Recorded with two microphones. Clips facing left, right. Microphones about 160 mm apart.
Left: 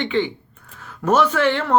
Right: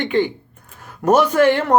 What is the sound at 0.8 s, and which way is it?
Speech, 10° right (ahead or behind).